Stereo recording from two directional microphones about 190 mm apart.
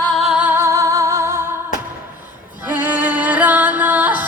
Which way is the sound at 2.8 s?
10° right (ahead or behind).